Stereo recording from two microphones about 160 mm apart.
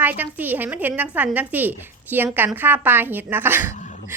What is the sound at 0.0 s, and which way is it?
A woman's voice, 10° right (ahead or behind).